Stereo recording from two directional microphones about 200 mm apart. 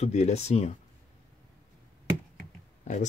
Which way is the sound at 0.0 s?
30° left (ahead or behind).